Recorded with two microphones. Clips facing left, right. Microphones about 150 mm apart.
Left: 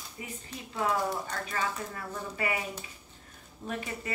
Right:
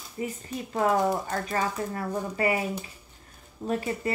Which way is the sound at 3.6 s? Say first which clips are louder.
Right 8 dB; 35° right (ahead or behind).